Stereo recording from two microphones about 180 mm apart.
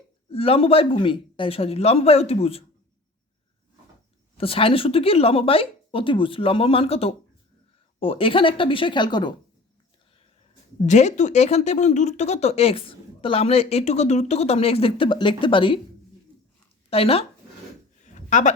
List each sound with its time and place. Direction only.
0.3 s speech: 30° left (ahead or behind)
4.4 s speech: 30° left (ahead or behind)
10.8 s speech: 40° left (ahead or behind)
16.9 s speech: 35° left (ahead or behind)
18.0 s a sound: 45° left (ahead or behind)